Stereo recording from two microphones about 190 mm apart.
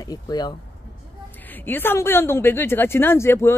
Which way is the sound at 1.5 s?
10° left (ahead or behind).